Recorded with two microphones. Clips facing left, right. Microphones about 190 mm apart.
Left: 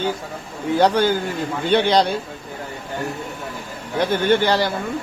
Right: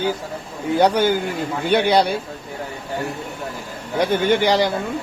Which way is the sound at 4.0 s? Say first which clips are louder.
Even; 15° right (ahead or behind).